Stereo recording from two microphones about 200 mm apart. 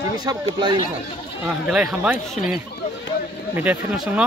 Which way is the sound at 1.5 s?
5° right (ahead or behind).